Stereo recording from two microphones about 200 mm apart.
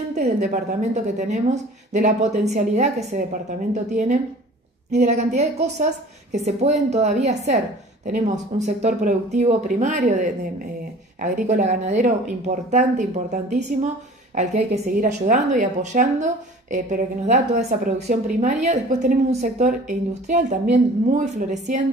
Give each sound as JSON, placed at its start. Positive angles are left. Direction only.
{"t": 0.4, "sound": "a woman's voice", "side_deg": -35}